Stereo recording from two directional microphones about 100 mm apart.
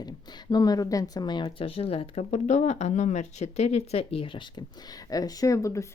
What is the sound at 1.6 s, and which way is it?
Speech, 75° left (ahead or behind).